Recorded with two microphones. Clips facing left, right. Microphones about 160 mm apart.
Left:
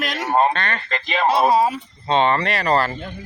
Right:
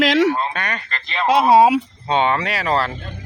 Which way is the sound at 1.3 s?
70° right (ahead or behind).